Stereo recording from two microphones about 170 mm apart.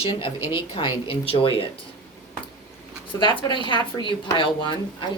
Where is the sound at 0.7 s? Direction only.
30° left (ahead or behind).